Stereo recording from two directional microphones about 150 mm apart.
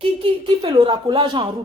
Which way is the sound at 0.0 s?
35° right (ahead or behind).